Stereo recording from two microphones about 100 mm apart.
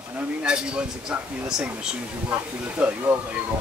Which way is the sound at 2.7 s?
20° right (ahead or behind).